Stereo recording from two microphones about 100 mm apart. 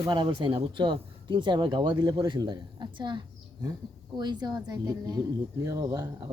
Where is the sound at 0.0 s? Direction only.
50° right (ahead or behind).